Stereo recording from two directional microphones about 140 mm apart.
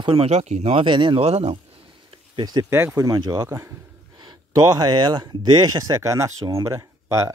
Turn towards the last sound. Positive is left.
turn(degrees=-20)  # may be behind; listen again after turning